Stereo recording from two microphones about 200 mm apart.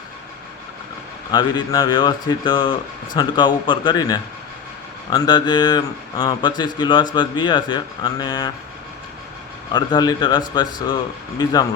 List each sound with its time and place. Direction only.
1.3 s speech: 20° left (ahead or behind)
9.7 s speech: 20° left (ahead or behind)